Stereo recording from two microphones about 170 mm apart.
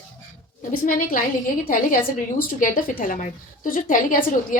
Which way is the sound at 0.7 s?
55° left (ahead or behind).